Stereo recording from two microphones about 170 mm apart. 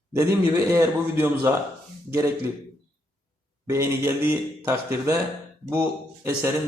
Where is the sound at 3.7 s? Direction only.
15° right (ahead or behind).